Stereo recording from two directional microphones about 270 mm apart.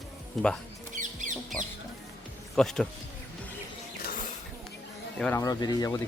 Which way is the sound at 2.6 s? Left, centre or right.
Centre.